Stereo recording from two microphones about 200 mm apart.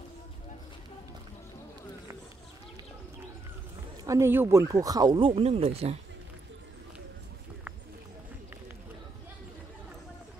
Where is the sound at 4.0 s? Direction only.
15° right (ahead or behind); by 5.9 s 30° right (ahead or behind).